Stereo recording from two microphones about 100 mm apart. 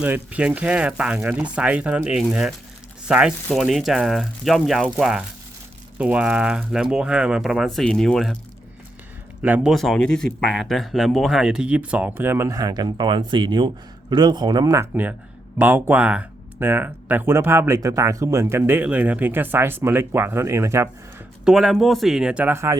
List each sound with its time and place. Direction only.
0.0 s speech: 15° right (ahead or behind); by 8.4 s 5° left (ahead or behind)
9.4 s speech: 15° right (ahead or behind)
9.7 s speech: 5° left (ahead or behind); by 12.5 s 20° right (ahead or behind)
12.5 s speech: 40° right (ahead or behind)
15.5 s speech: 20° right (ahead or behind)
21.4 s speech: 5° right (ahead or behind)
22.5 s speech: 30° right (ahead or behind)